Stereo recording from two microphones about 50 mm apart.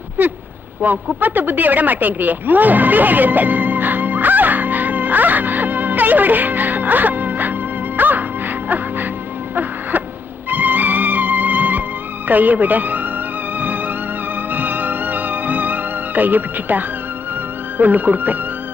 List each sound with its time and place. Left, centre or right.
0.2 s speech: right
0.8 s a sound: right
7.9 s music: right
10.5 s music: right
12.3 s speech: right
13.6 s music: right
17.7 s speech: right